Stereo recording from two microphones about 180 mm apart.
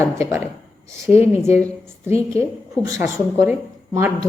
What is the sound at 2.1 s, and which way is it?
Speech, 15° right (ahead or behind).